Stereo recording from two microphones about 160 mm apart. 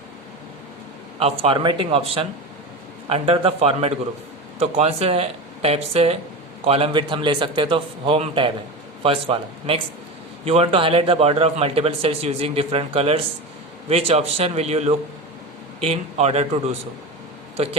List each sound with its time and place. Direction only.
1.2 s a man's voice: 35° right (ahead or behind)